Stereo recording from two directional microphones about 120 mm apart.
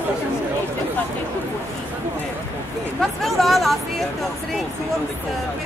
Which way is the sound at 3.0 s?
Centre (ahead or behind).